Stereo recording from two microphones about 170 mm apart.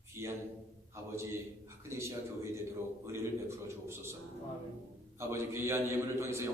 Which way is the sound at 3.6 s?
15° right (ahead or behind).